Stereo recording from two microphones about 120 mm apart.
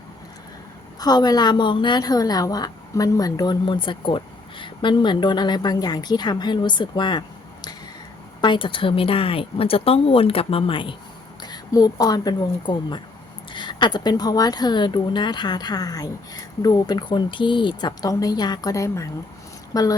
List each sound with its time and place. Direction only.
0.9 s a woman's voice: 35° left (ahead or behind)
11.4 s a woman's voice: 35° left (ahead or behind)